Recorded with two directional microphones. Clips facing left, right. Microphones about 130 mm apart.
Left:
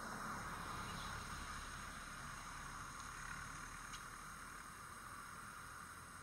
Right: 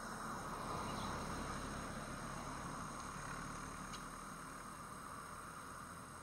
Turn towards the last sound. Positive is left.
turn(degrees=-35)  # may be behind; listen again after turning